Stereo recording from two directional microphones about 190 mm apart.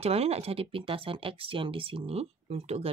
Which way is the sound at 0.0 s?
35° right (ahead or behind).